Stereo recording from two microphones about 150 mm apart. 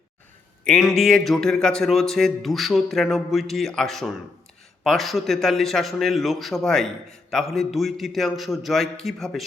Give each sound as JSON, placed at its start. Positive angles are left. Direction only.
{"t": 0.6, "sound": "speech", "side_deg": 5}